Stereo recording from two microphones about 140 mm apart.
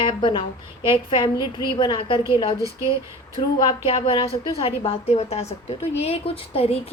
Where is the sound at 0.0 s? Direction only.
35° left (ahead or behind).